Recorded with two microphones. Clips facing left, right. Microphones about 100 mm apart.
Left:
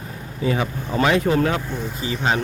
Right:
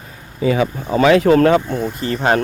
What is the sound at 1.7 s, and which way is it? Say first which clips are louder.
Speech: right 6 dB; centre (ahead or behind).